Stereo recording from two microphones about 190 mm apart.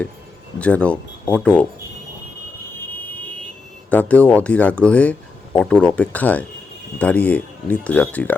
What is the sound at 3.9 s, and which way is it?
Speech, 10° left (ahead or behind).